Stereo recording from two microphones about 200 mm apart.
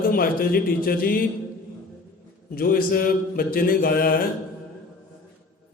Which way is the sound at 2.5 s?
45° left (ahead or behind).